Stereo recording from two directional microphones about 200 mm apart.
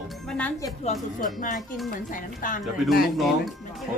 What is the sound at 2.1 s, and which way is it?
Speech, 45° left (ahead or behind).